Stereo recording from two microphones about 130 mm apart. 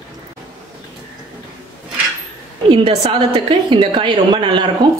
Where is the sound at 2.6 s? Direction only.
40° right (ahead or behind).